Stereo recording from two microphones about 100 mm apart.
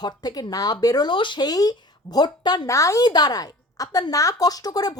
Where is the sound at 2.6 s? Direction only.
30° left (ahead or behind).